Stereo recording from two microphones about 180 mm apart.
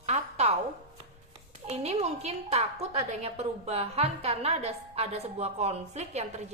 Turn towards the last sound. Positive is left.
turn(degrees=-35)  # may be behind; listen again after turning